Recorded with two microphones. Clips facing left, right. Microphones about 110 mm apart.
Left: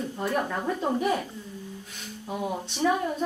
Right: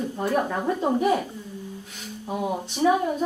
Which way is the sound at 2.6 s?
5° right (ahead or behind).